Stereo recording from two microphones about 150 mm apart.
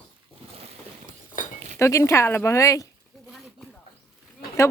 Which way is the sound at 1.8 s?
20° left (ahead or behind).